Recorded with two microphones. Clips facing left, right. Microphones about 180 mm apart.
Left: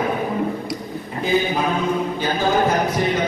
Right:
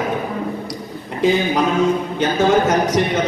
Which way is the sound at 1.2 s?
90° right.